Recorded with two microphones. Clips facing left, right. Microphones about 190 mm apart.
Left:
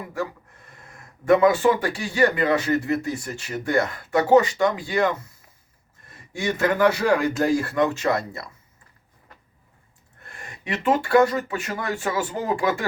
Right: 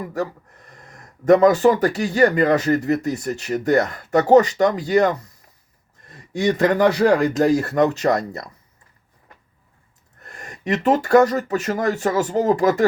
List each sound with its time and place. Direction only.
0.0 s speech: 40° right (ahead or behind)
6.3 s speech: 35° right (ahead or behind)
10.2 s speech: 40° right (ahead or behind)